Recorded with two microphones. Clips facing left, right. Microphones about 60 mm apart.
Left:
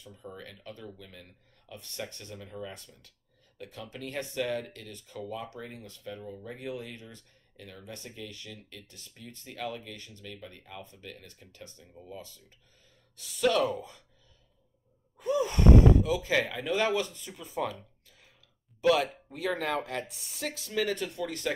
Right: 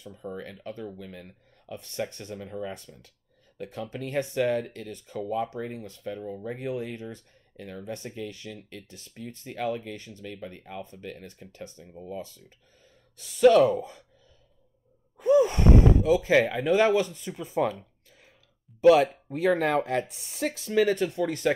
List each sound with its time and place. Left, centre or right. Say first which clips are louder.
0.0 s speech: right 7 dB; right
15.1 s speech: right 8 dB; right
18.8 s speech: right 7 dB; right